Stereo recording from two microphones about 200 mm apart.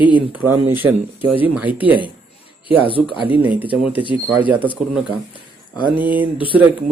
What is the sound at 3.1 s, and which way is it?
Speech, 25° left (ahead or behind).